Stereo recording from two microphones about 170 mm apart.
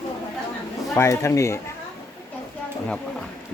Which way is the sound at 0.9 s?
15° left (ahead or behind).